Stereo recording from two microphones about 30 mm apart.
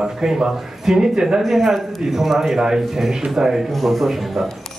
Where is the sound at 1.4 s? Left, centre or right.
Centre.